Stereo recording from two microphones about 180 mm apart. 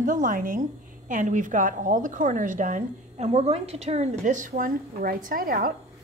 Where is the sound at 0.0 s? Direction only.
45° right (ahead or behind).